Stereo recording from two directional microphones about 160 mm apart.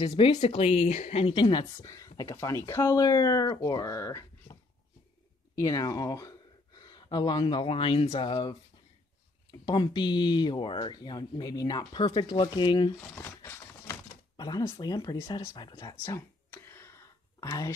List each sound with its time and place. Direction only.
0.0 s a woman's voice: 30° left (ahead or behind)
1.3 s speech: 30° left (ahead or behind)
5.6 s speech: 20° left (ahead or behind)
13.0 s a sound: 15° left (ahead or behind)
14.3 s speech: 25° left (ahead or behind)
16.5 s a sound: 15° left (ahead or behind)